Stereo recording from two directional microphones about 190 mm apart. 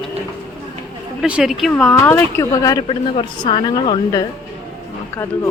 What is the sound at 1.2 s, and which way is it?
A woman's voice, 5° right (ahead or behind).